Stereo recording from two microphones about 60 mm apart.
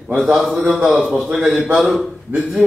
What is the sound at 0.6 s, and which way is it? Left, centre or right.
Speech, centre.